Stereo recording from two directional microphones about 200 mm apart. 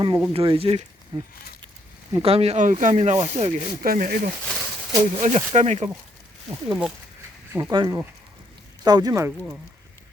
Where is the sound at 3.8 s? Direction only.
45° right (ahead or behind).